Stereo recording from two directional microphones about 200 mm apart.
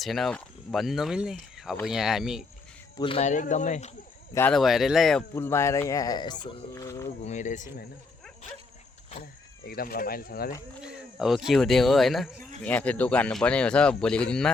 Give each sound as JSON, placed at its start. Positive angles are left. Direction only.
{"t": 0.0, "sound": "speech", "side_deg": 0}
{"t": 3.0, "sound": "speech", "side_deg": 30}
{"t": 4.4, "sound": "speech", "side_deg": 5}
{"t": 5.3, "sound": "speech", "side_deg": 10}
{"t": 7.2, "sound": "speech", "side_deg": 35}
{"t": 9.6, "sound": "speech", "side_deg": 50}
{"t": 10.8, "sound": "speech", "side_deg": -5}